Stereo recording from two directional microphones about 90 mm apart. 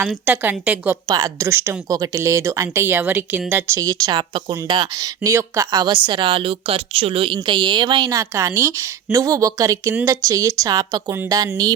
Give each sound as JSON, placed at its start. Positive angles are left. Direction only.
{"t": 0.3, "sound": "a woman's voice", "side_deg": -20}
{"t": 1.0, "sound": "speech", "side_deg": -45}
{"t": 1.5, "sound": "a woman's voice", "side_deg": -25}
{"t": 3.5, "sound": "speech", "side_deg": -35}
{"t": 4.1, "sound": "speech", "side_deg": -65}
{"t": 4.7, "sound": "speech", "side_deg": -50}
{"t": 5.8, "sound": "speech", "side_deg": -60}
{"t": 7.4, "sound": "speech", "side_deg": -60}
{"t": 8.1, "sound": "speech", "side_deg": -35}